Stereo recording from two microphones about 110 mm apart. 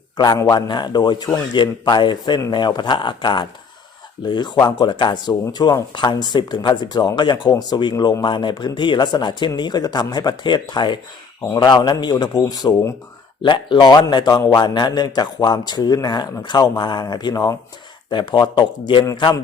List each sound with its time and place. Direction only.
0.2 s a man's voice: 35° left (ahead or behind)
13.4 s a man's voice: 45° left (ahead or behind)